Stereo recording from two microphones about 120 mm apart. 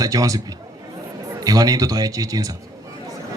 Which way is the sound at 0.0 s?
30° right (ahead or behind).